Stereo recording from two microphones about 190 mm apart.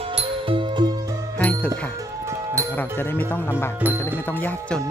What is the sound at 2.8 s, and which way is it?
Music, 10° left (ahead or behind).